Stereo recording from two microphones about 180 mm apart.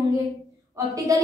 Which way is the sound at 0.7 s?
20° right (ahead or behind).